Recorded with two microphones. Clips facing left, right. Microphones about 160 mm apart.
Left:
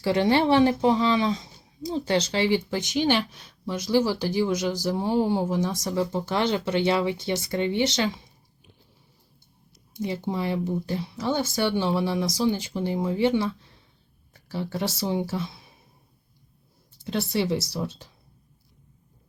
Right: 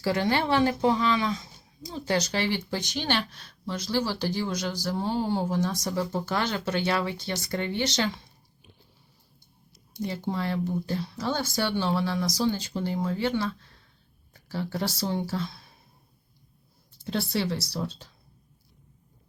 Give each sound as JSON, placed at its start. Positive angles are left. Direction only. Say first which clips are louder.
{"t": 0.0, "sound": "speech", "louder": "left 4 dB", "side_deg": 25}
{"t": 10.3, "sound": "speech", "louder": "left 1 dB", "side_deg": 15}
{"t": 17.2, "sound": "speech", "louder": "left 3 dB", "side_deg": 20}